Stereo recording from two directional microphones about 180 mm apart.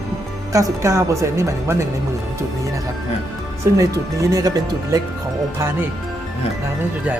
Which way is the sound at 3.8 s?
20° right (ahead or behind).